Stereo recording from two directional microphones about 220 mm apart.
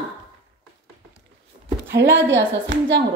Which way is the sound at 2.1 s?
55° right (ahead or behind).